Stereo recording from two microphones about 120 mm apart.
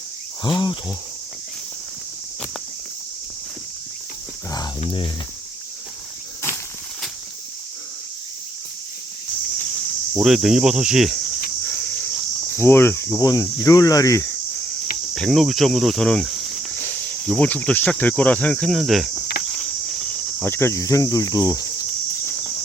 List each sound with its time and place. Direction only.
0.4 s speech: 40° left (ahead or behind)
10.2 s speech: 5° right (ahead or behind)
11.6 s a sound: 10° left (ahead or behind)
12.5 s speech: 20° left (ahead or behind)
15.1 s speech: centre (ahead or behind)
16.3 s cricket: centre (ahead or behind)
16.7 s speech: 15° left (ahead or behind); by 19.1 s centre (ahead or behind)
19.5 s cricket: 5° left (ahead or behind)
20.4 s speech: 20° left (ahead or behind)